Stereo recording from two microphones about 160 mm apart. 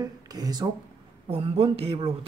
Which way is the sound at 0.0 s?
25° right (ahead or behind).